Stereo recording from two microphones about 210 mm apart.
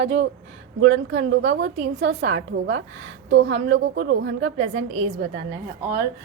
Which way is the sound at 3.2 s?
60° right (ahead or behind).